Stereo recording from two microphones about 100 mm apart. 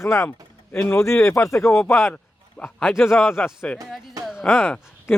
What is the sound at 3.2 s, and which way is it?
Speech, 20° left (ahead or behind).